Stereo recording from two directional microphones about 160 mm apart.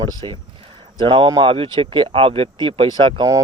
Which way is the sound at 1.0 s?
30° right (ahead or behind).